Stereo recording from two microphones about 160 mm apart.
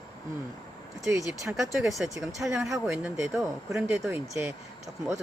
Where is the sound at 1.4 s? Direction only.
Centre (ahead or behind).